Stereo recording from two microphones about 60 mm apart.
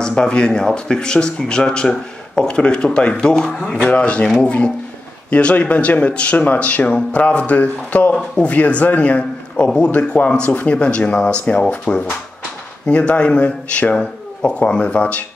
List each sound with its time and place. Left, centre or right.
0.0 s a man's voice: centre